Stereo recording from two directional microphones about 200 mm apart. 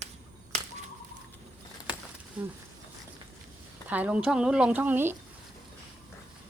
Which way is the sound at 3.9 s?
5° right (ahead or behind).